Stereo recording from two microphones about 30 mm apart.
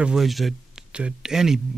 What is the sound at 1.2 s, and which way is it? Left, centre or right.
Speech, centre.